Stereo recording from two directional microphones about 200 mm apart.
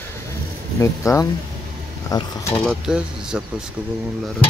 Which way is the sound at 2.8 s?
5° right (ahead or behind).